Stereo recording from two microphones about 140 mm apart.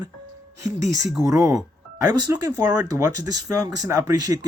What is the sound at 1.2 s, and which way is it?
Speech, 20° right (ahead or behind).